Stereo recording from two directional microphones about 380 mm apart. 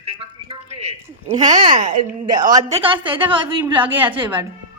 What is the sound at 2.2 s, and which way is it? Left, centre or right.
A woman's voice, centre.